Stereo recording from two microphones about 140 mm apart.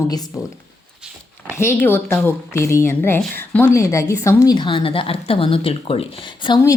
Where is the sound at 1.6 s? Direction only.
15° left (ahead or behind); by 6.6 s 35° left (ahead or behind).